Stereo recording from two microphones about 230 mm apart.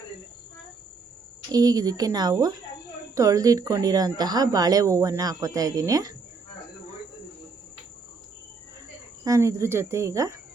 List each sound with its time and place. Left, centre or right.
1.5 s a woman's voice: centre
9.2 s a woman's voice: centre